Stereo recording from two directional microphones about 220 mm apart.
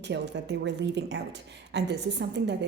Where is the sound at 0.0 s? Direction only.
50° right (ahead or behind).